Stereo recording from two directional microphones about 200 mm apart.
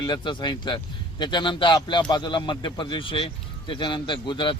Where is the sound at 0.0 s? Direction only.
20° left (ahead or behind).